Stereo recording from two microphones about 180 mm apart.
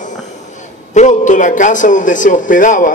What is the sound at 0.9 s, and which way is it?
A man's voice, 45° left (ahead or behind).